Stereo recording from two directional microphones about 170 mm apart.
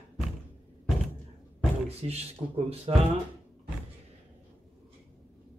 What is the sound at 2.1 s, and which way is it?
Speech, 35° right (ahead or behind).